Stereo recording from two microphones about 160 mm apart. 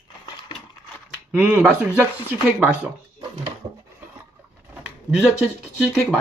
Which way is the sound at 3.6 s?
35° right (ahead or behind).